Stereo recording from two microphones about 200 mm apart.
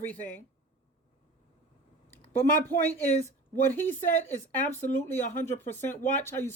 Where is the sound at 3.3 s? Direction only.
10° left (ahead or behind).